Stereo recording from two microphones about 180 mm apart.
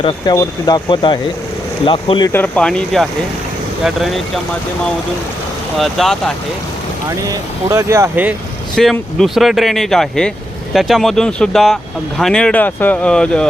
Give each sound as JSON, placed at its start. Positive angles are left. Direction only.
{"t": 0.0, "sound": "speech", "side_deg": 20}
{"t": 2.3, "sound": "speech", "side_deg": 10}
{"t": 5.7, "sound": "speech", "side_deg": 0}
{"t": 7.2, "sound": "speech", "side_deg": -15}
{"t": 8.7, "sound": "speech", "side_deg": 0}